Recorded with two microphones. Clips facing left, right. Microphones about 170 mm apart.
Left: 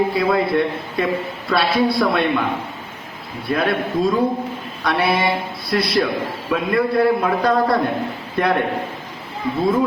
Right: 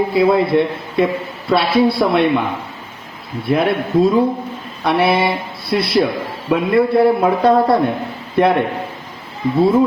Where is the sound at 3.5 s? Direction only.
25° right (ahead or behind).